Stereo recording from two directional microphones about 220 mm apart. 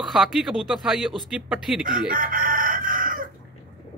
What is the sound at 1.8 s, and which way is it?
Chicken, 40° right (ahead or behind).